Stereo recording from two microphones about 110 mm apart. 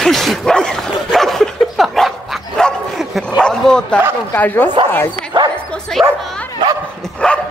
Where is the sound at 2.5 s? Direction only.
5° left (ahead or behind).